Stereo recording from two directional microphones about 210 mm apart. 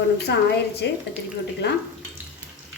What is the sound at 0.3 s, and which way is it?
Speech, 50° left (ahead or behind).